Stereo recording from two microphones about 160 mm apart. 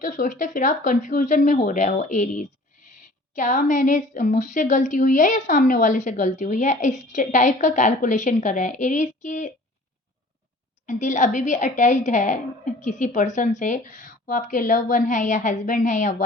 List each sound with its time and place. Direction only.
0.0 s a woman's voice: 55° left (ahead or behind)
10.8 s a woman's voice: 50° left (ahead or behind)